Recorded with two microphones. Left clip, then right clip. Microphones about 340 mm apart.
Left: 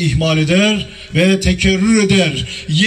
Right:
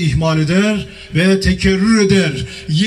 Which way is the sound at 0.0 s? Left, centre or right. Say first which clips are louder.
Left 1 dB; centre.